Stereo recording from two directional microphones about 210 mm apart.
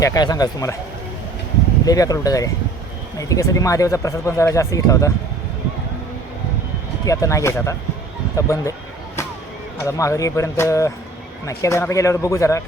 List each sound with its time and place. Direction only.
0.0 s speech: 15° left (ahead or behind)
1.8 s speech: 15° left (ahead or behind)
7.0 s speech: 15° left (ahead or behind)
9.8 s speech: 15° left (ahead or behind)